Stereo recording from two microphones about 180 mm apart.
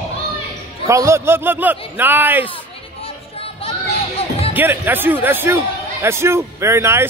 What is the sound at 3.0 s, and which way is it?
Music, 30° left (ahead or behind).